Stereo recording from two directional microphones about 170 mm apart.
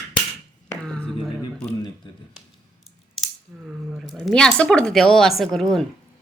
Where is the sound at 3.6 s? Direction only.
Centre (ahead or behind).